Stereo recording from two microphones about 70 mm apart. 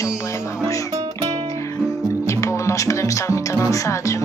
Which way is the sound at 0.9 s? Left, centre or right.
Right.